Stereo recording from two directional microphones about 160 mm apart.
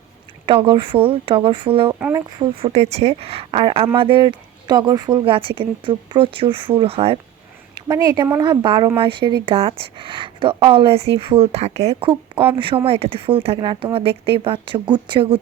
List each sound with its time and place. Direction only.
0.4 s speech: 35° right (ahead or behind)
7.8 s a woman's voice: 25° right (ahead or behind)